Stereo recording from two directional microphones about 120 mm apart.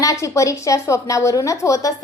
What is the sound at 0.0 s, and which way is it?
Speech, 25° left (ahead or behind).